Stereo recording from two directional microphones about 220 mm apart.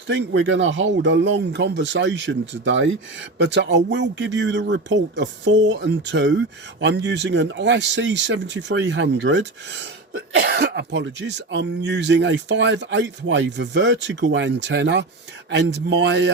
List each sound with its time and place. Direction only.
0.1 s speech: 55° right (ahead or behind)